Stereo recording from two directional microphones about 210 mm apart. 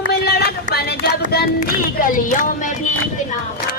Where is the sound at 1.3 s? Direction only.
45° left (ahead or behind).